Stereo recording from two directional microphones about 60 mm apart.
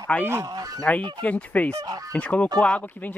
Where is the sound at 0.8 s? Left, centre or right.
Left.